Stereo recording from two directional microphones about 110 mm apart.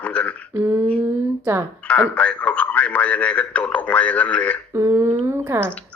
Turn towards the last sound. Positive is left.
turn(degrees=-25)  # may be behind; listen again after turning